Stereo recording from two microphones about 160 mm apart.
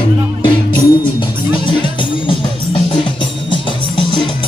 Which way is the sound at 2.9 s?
30° left (ahead or behind).